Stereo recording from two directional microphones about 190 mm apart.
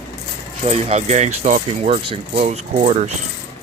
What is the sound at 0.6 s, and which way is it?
Speech, 30° right (ahead or behind).